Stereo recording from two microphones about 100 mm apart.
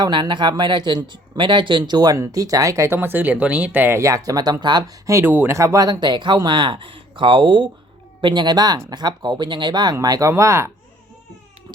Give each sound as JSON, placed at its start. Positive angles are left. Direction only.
{"t": 0.0, "sound": "speech", "side_deg": -50}
{"t": 5.2, "sound": "speech", "side_deg": -20}
{"t": 5.5, "sound": "speech", "side_deg": -35}